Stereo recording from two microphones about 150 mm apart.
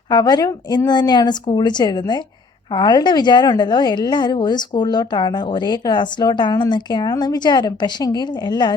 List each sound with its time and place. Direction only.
0.1 s a woman's voice: 30° left (ahead or behind)